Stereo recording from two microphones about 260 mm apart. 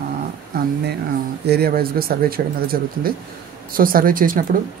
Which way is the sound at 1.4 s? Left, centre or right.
Right.